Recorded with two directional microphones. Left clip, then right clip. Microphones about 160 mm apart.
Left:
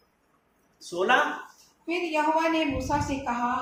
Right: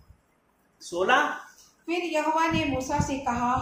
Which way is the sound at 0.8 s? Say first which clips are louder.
Even; 5° right (ahead or behind).